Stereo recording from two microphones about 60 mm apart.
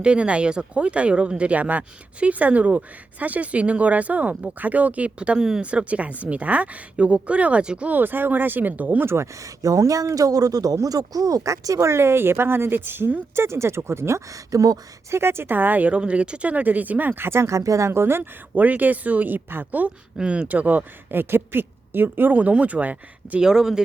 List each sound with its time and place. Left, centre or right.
0.0 s speech: centre
7.9 s speech: right
9.0 s speech: right
13.3 s speech: right
14.3 s speech: right
15.1 s speech: right
17.6 s speech: right
18.2 s speech: right
20.1 s speech: centre
23.4 s speech: centre